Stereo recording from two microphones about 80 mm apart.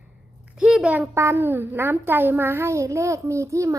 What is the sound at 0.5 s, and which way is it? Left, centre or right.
Speech, centre.